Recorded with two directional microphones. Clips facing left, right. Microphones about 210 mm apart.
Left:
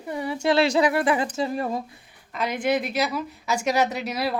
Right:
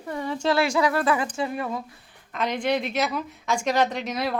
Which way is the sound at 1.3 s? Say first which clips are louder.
Left 2 dB; 35° left (ahead or behind).